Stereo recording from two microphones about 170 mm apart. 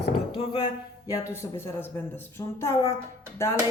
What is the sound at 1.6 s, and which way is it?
Speech, 15° left (ahead or behind).